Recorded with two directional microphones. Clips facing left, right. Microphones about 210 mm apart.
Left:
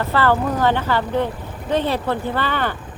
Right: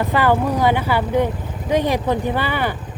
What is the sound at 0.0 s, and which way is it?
Speech, 15° right (ahead or behind).